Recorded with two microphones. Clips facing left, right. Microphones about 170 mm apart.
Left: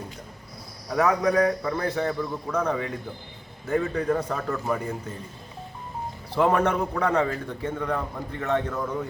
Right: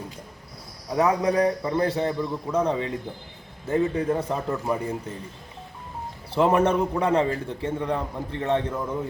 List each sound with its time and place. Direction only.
0.9 s a man's voice: 25° right (ahead or behind)
6.3 s a man's voice: 25° right (ahead or behind)